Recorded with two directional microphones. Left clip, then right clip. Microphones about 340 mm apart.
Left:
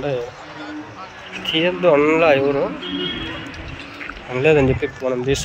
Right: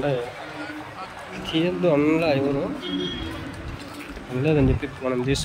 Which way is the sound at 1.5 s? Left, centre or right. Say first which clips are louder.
Left 6 dB; centre.